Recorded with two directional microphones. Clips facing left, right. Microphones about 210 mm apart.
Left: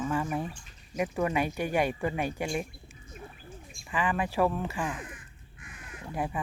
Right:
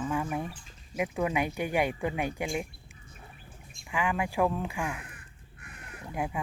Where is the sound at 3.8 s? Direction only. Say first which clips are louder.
Left 1 dB; 15° right (ahead or behind).